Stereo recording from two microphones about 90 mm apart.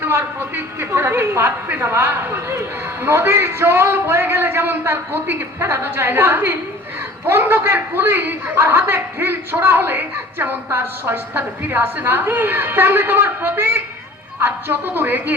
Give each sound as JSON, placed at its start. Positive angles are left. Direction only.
{"t": 0.0, "sound": "a woman's voice", "side_deg": -25}